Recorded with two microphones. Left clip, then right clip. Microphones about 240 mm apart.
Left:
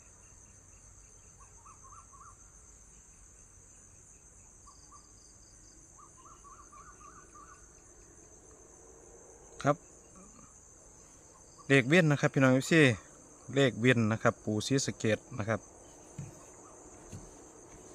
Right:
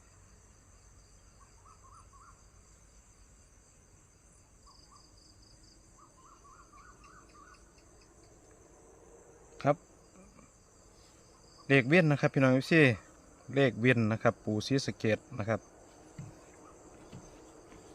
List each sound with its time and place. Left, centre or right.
9.6 s insect: centre
11.6 s speech: centre